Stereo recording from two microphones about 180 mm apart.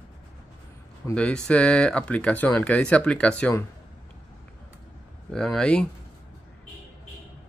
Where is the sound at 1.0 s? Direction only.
5° left (ahead or behind).